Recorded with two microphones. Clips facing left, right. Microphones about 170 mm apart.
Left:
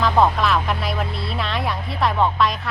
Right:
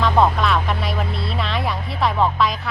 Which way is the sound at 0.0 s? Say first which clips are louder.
Even; centre (ahead or behind).